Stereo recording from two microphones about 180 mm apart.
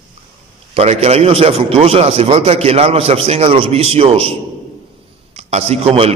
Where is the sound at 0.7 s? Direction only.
35° right (ahead or behind).